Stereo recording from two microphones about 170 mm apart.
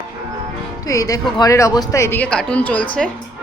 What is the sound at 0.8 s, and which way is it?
Speech, 20° left (ahead or behind).